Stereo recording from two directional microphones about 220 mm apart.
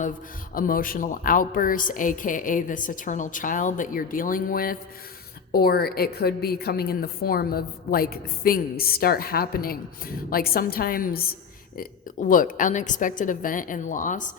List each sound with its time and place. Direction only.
0.5 s a woman's voice: 40° left (ahead or behind)